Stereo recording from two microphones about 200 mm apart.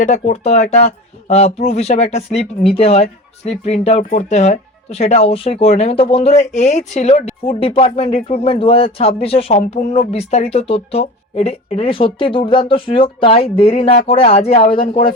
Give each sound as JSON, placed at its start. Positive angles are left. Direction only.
{"t": 0.0, "sound": "speech", "side_deg": 35}